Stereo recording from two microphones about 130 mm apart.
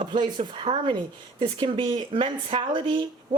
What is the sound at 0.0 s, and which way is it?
Speech, 40° right (ahead or behind).